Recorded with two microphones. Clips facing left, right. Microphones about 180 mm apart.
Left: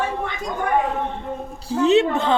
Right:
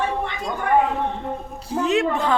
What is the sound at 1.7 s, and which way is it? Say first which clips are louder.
Speech: left 4 dB; 30° left (ahead or behind).